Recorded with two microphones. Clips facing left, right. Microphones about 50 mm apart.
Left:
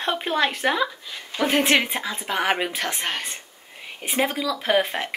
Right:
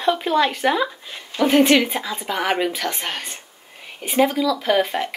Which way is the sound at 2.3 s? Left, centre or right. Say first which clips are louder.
Right 2 dB; centre.